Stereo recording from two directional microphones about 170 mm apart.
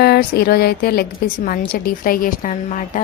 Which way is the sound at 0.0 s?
70° left (ahead or behind).